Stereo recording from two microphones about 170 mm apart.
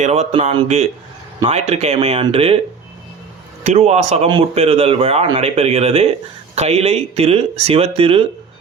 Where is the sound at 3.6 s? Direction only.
40° right (ahead or behind).